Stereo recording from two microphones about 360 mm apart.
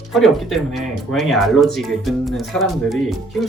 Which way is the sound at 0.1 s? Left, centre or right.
Centre.